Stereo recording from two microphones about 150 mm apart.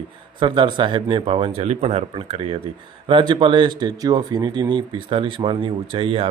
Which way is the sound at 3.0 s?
30° right (ahead or behind).